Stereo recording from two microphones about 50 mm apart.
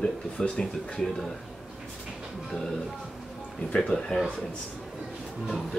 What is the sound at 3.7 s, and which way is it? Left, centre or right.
Speech, centre.